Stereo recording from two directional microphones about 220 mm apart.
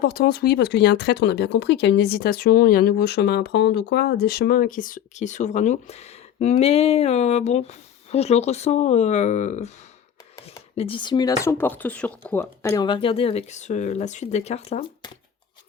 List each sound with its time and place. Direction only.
0.0 s speech: 45° left (ahead or behind)
10.8 s speech: 25° left (ahead or behind)